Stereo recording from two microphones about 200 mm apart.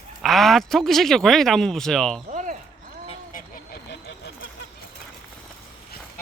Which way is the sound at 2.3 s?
40° right (ahead or behind).